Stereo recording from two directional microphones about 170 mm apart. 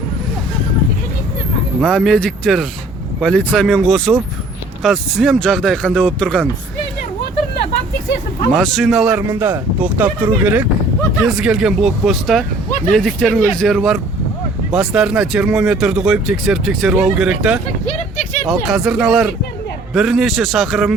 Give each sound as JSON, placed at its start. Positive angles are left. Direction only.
{"t": 1.8, "sound": "speech", "side_deg": 5}
{"t": 8.5, "sound": "speech", "side_deg": 0}
{"t": 17.8, "sound": "a sound", "side_deg": 45}
{"t": 18.4, "sound": "speech", "side_deg": 0}